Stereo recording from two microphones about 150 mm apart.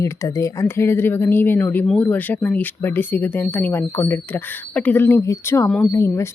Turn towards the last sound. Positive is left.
turn(degrees=20)  # may be behind; listen again after turning